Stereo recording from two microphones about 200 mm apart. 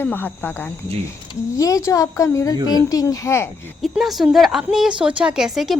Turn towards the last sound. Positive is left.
turn(degrees=0)  # may be behind; listen again after turning